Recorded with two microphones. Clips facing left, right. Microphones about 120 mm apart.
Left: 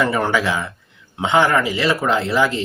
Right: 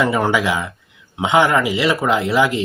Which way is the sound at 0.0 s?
15° right (ahead or behind).